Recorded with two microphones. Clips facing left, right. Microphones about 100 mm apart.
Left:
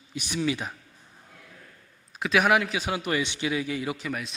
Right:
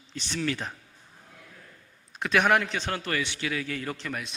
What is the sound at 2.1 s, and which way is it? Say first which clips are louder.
A man's voice: left 1 dB; centre (ahead or behind).